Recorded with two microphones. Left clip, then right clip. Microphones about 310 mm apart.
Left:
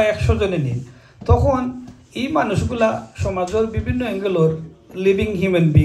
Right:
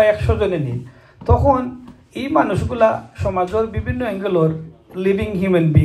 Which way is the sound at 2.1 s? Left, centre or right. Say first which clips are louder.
Right 2 dB; centre.